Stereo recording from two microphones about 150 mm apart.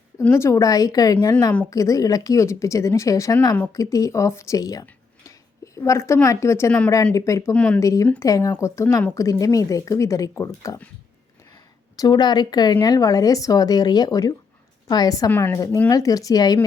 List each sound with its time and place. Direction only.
0.2 s a woman's voice: 15° left (ahead or behind)
6.9 s speech: 20° left (ahead or behind)
7.5 s speech: 10° left (ahead or behind)
7.8 s speech: 20° left (ahead or behind)
11.9 s speech: 30° left (ahead or behind)
15.3 s speech: 15° left (ahead or behind)